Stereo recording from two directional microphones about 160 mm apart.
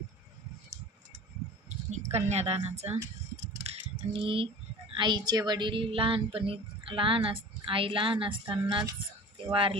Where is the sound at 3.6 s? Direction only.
35° right (ahead or behind).